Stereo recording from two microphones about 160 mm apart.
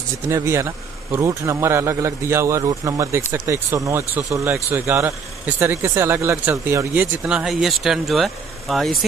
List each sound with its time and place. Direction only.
0.3 s speech: 20° right (ahead or behind); by 9.0 s centre (ahead or behind)